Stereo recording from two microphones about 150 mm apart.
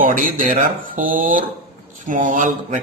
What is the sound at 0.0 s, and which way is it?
A man's voice, 65° right (ahead or behind).